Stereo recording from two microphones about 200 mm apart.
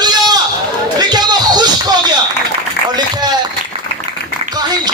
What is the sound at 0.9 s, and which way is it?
Music, 20° right (ahead or behind).